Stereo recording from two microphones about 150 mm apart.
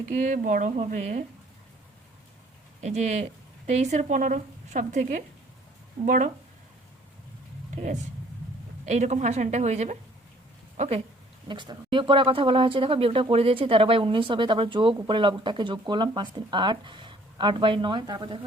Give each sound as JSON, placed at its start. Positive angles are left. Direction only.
{"t": 0.1, "sound": "speech", "side_deg": -55}
{"t": 2.8, "sound": "a woman's voice", "side_deg": -45}
{"t": 8.9, "sound": "a woman's voice", "side_deg": -50}
{"t": 11.4, "sound": "speech", "side_deg": -30}